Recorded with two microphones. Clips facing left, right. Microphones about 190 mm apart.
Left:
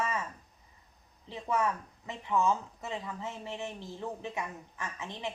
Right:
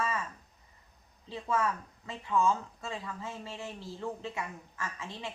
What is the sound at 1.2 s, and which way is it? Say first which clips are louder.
Speech: even; 20° left (ahead or behind).